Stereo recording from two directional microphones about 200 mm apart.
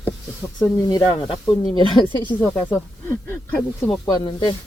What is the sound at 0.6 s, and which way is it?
Speech, 20° left (ahead or behind).